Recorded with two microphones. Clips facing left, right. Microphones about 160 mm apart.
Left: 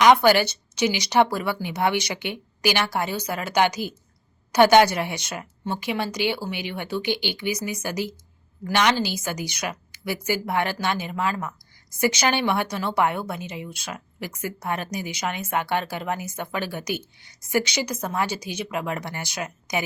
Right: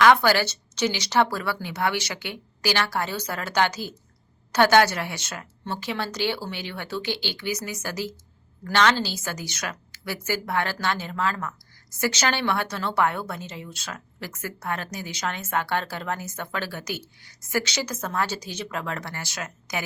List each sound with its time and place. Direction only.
0.0 s a woman's voice: 15° left (ahead or behind)